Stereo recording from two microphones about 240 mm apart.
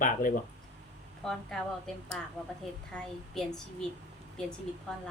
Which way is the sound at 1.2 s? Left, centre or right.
Centre.